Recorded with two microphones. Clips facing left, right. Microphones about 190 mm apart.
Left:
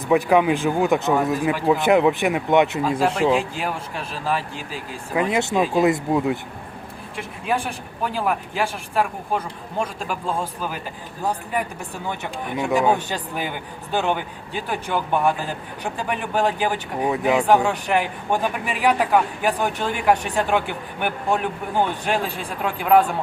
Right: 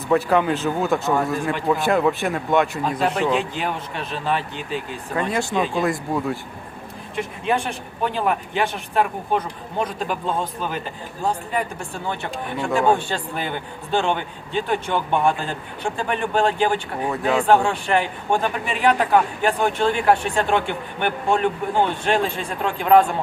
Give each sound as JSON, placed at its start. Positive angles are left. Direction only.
{"t": 0.1, "sound": "speech", "side_deg": 10}
{"t": 3.2, "sound": "a man's voice", "side_deg": 5}
{"t": 5.3, "sound": "speech", "side_deg": 20}
{"t": 5.5, "sound": "a man's voice", "side_deg": 5}
{"t": 5.8, "sound": "speech", "side_deg": 20}
{"t": 8.0, "sound": "a man's voice", "side_deg": 5}
{"t": 12.5, "sound": "a man's voice", "side_deg": 10}